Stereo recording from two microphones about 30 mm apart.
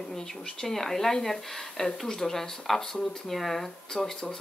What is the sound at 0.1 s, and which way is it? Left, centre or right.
Speech, centre.